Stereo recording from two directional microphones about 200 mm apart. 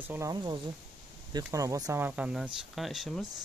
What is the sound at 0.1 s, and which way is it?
Speech, 15° right (ahead or behind).